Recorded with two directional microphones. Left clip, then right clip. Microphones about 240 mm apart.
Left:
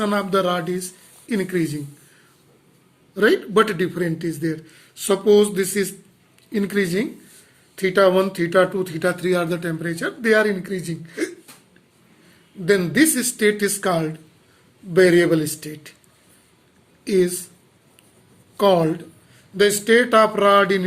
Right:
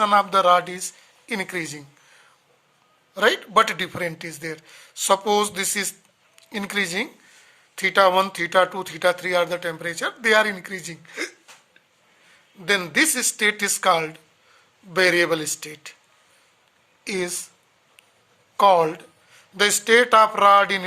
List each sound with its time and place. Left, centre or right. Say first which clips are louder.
0.0 s speech: right 3 dB; right
3.2 s speech: left 1 dB; right
12.6 s speech: left 2 dB; right
17.0 s speech: left 8 dB; right
18.5 s speech: right 1 dB; right